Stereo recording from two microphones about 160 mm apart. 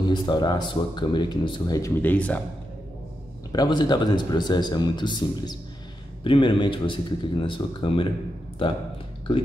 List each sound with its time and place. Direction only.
0.0 s speech: 30° left (ahead or behind)
1.8 s speech: 10° left (ahead or behind)
3.5 s a man's voice: 30° left (ahead or behind)